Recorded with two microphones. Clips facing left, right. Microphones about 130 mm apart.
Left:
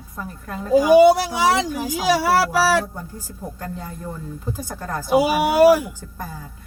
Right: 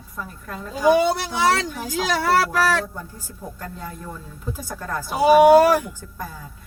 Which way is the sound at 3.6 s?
25° left (ahead or behind).